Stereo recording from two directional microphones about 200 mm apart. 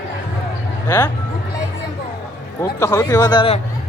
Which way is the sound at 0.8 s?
15° left (ahead or behind).